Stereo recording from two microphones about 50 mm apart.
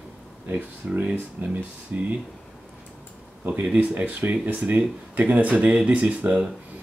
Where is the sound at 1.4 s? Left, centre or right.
Right.